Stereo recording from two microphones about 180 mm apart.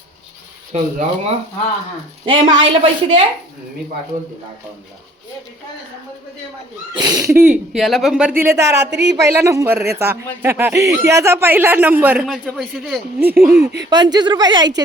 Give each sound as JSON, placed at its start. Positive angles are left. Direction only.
{"t": 0.7, "sound": "a woman's voice", "side_deg": -40}
{"t": 2.4, "sound": "a woman's voice", "side_deg": -35}
{"t": 6.9, "sound": "speech", "side_deg": -20}
{"t": 8.4, "sound": "speech", "side_deg": -15}
{"t": 8.8, "sound": "speech", "side_deg": -70}
{"t": 9.2, "sound": "speech", "side_deg": -15}
{"t": 13.1, "sound": "speech", "side_deg": -10}
{"t": 13.9, "sound": "a woman's voice", "side_deg": -25}